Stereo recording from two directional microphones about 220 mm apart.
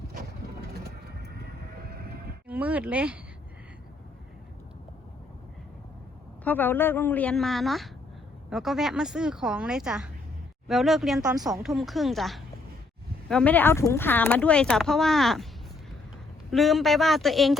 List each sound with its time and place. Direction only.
0.7 s vehicle: 45° right (ahead or behind)
2.5 s speech: 5° right (ahead or behind)
6.4 s a woman's voice: 10° left (ahead or behind)
16.5 s speech: centre (ahead or behind)